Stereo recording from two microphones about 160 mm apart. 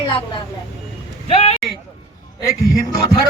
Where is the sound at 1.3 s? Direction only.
40° left (ahead or behind).